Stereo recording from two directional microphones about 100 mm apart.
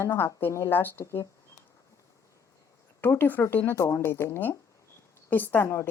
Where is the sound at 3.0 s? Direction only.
20° left (ahead or behind).